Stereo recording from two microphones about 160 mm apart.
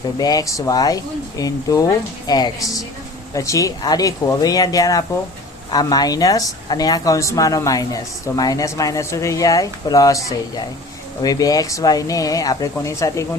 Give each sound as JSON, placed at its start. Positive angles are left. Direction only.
{"t": 0.2, "sound": "speech", "side_deg": 25}